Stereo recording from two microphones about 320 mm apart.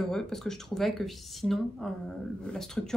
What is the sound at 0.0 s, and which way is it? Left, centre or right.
Speech, centre.